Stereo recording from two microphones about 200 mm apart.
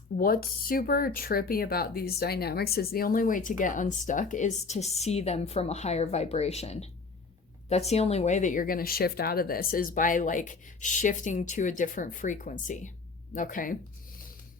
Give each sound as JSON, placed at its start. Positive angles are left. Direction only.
{"t": 0.2, "sound": "speech", "side_deg": 45}